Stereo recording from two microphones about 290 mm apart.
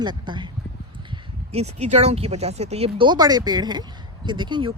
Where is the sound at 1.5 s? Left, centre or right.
Right.